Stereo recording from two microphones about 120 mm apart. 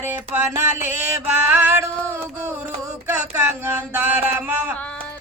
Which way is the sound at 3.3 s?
20° right (ahead or behind).